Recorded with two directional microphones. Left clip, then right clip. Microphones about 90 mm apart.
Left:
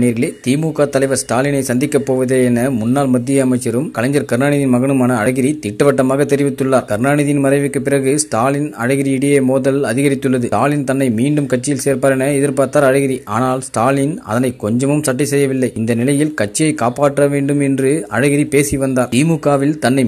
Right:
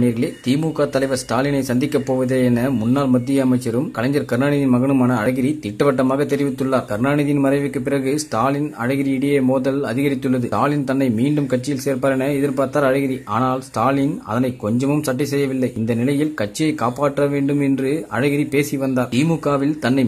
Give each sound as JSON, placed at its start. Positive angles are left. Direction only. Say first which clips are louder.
{"t": 0.0, "sound": "a man's voice", "louder": "left 4 dB", "side_deg": 30}